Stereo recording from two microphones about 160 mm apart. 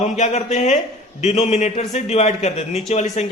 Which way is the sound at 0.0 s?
45° left (ahead or behind).